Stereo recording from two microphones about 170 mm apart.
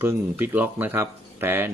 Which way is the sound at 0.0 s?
15° right (ahead or behind).